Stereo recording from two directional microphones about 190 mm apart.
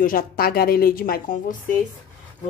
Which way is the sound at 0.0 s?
50° left (ahead or behind).